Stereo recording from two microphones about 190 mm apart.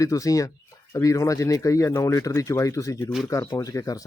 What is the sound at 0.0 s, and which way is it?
Speech, 15° left (ahead or behind).